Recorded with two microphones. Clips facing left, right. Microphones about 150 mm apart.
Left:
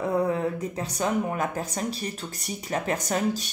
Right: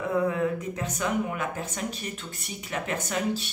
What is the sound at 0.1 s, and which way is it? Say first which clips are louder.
Speech: right 2 dB; 35° left (ahead or behind).